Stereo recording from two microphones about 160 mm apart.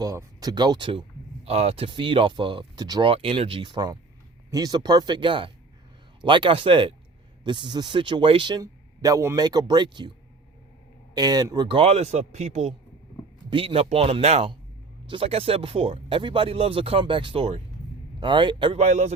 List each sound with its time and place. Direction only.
0.0 s speech: 20° right (ahead or behind)
11.1 s speech: 25° right (ahead or behind); by 12.7 s 45° right (ahead or behind)
13.5 s speech: 35° right (ahead or behind)